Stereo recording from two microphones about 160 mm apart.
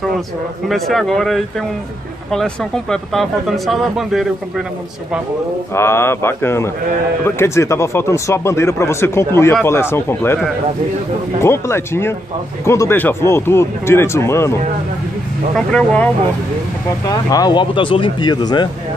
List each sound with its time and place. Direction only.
0.7 s speech: centre (ahead or behind)
5.8 s speech: 15° left (ahead or behind)
11.4 s speech: 15° left (ahead or behind)
15.5 s speech: 10° left (ahead or behind)
17.0 s speech: 25° left (ahead or behind)